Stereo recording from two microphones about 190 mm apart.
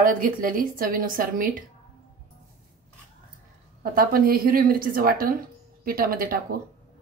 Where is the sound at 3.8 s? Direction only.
50° right (ahead or behind).